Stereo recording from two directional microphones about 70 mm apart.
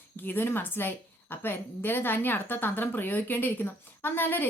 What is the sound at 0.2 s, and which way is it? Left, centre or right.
A woman's voice, left.